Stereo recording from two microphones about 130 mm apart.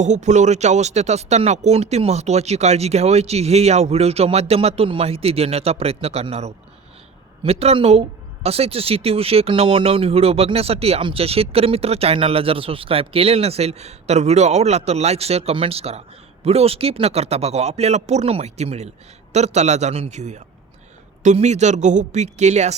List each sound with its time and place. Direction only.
0.0 s a man's voice: 65° right (ahead or behind)